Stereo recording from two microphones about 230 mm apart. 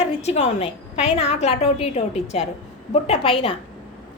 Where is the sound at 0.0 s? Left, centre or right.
Left.